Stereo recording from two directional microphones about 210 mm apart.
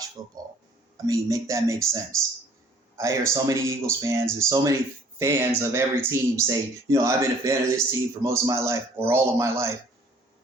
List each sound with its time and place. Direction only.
0.2 s speech: 20° right (ahead or behind)